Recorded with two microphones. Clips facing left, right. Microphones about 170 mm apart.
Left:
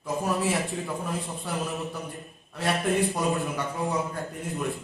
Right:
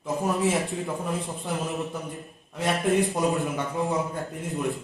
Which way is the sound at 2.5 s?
20° right (ahead or behind).